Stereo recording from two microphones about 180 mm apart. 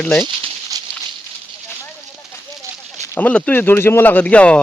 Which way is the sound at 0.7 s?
20° right (ahead or behind).